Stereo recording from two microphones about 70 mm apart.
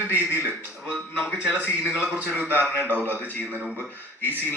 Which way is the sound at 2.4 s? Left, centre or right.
Right.